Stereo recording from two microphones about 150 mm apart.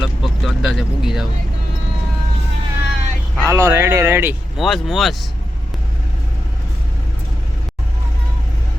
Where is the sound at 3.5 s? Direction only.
20° right (ahead or behind).